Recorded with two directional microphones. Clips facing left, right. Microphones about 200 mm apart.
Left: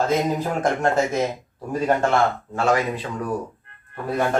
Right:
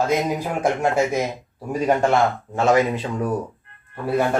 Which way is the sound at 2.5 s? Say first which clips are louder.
Right 3 dB; 20° right (ahead or behind).